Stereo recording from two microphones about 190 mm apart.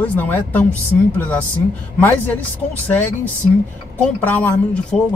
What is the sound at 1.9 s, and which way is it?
Speech, 10° left (ahead or behind).